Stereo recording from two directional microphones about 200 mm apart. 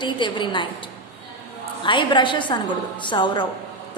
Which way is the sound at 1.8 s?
25° left (ahead or behind).